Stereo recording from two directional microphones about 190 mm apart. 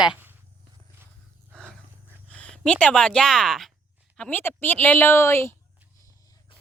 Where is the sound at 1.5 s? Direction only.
Centre (ahead or behind).